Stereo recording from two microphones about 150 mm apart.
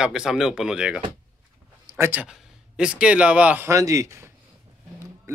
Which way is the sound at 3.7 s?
20° right (ahead or behind).